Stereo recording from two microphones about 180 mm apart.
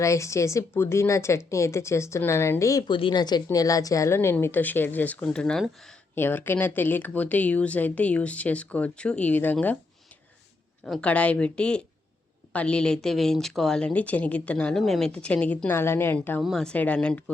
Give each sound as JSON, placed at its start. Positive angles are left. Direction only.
{"t": 0.0, "sound": "a woman's voice", "side_deg": 15}
{"t": 10.8, "sound": "speech", "side_deg": 5}
{"t": 16.4, "sound": "speech", "side_deg": 0}